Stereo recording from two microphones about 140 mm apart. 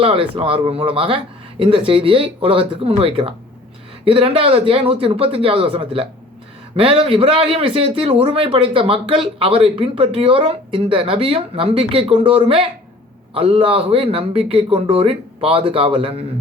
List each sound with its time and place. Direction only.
0.0 s a man's voice: 40° right (ahead or behind)